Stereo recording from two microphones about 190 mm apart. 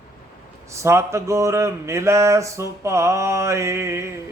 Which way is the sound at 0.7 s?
15° right (ahead or behind).